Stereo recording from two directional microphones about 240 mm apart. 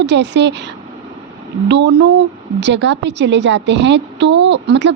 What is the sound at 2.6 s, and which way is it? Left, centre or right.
A woman's voice, right.